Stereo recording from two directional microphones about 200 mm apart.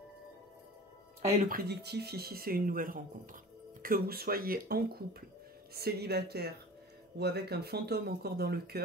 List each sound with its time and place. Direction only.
1.4 s speech: 45° right (ahead or behind)